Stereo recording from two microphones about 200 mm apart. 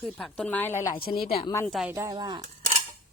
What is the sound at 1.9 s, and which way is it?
Speech, 20° right (ahead or behind).